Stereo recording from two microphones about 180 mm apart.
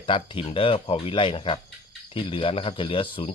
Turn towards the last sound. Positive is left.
turn(degrees=30)  # may be behind; listen again after turning